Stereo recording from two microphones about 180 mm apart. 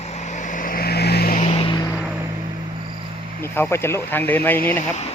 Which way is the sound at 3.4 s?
15° left (ahead or behind).